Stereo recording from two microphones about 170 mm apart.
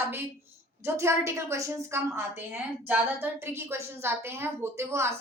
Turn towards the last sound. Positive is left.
turn(degrees=-15)  # may be behind; listen again after turning